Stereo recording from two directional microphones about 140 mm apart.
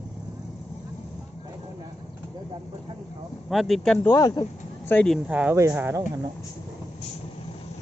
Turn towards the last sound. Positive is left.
turn(degrees=-15)  # may be behind; listen again after turning